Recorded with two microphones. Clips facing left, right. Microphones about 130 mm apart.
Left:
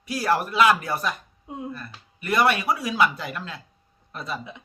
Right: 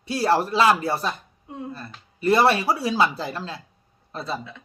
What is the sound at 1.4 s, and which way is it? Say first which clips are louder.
Speech: left 1 dB; 15° left (ahead or behind).